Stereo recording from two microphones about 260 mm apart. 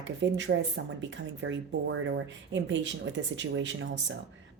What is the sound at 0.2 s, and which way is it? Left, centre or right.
A woman's voice, right.